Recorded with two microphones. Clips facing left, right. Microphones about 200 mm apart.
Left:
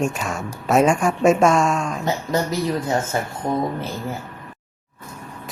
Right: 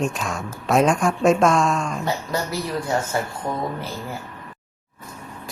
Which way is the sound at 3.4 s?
20° left (ahead or behind).